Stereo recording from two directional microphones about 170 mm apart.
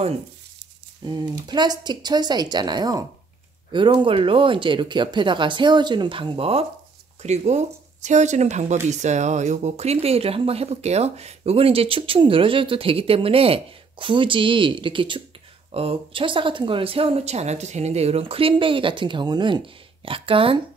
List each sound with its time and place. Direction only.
1.0 s speech: 25° right (ahead or behind)